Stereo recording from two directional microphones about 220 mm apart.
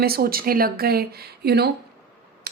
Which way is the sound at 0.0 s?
45° right (ahead or behind).